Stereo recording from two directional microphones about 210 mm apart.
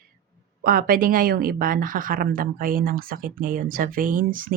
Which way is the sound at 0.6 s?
40° right (ahead or behind).